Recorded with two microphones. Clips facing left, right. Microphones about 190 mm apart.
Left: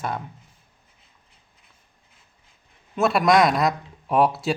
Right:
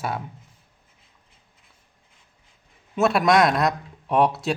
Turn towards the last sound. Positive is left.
turn(degrees=0)  # may be behind; listen again after turning